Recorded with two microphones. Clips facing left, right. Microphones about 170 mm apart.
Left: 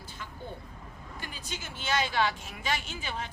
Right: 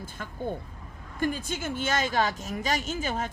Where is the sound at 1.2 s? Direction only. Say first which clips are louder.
Right 14 dB; 50° right (ahead or behind).